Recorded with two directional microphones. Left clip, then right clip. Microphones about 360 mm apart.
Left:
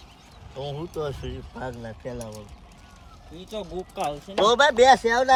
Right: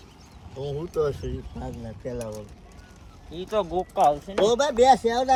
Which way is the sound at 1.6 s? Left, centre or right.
Left.